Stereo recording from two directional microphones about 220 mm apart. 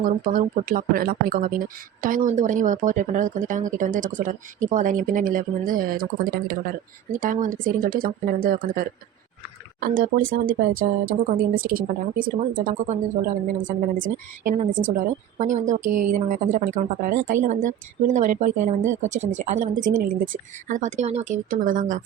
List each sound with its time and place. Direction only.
0.0 s a woman's voice: 40° right (ahead or behind)
11.3 s a woman's voice: 40° right (ahead or behind)